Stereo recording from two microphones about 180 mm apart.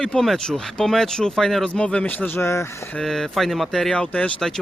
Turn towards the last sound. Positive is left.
turn(degrees=5)  # may be behind; listen again after turning